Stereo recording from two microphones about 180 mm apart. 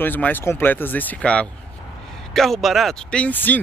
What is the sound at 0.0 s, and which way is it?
Speech, 10° left (ahead or behind).